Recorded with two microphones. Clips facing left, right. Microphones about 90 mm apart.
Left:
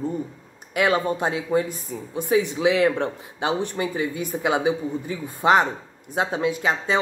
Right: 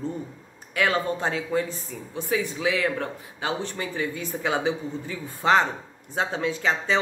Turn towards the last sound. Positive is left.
turn(degrees=15)  # may be behind; listen again after turning